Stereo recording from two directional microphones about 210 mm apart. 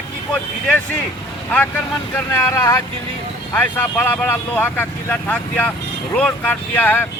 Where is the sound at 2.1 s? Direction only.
10° left (ahead or behind).